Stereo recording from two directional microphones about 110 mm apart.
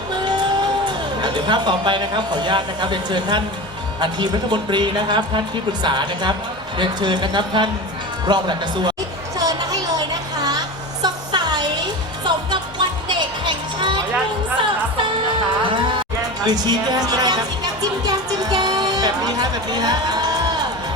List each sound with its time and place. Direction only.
0.3 s speech: 40° right (ahead or behind)
9.4 s a sound: 30° right (ahead or behind)
11.0 s music: 40° right (ahead or behind)
15.6 s music: 50° right (ahead or behind)